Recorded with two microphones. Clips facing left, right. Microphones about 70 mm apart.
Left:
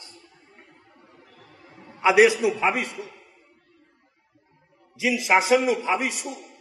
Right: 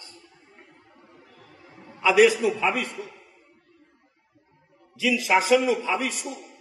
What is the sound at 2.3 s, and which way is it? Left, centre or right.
Speech, centre.